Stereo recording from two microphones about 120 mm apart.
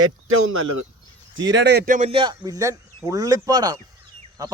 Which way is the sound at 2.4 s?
30° right (ahead or behind).